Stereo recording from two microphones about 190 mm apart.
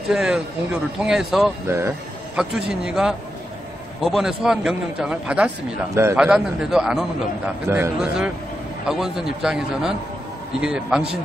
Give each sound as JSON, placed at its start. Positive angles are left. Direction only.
{"t": 0.1, "sound": "a man's voice", "side_deg": -5}
{"t": 1.7, "sound": "a man's voice", "side_deg": -15}
{"t": 2.3, "sound": "a man's voice", "side_deg": -5}